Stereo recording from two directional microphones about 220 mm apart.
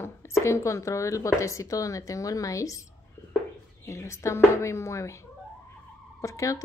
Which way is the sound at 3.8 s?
15° left (ahead or behind).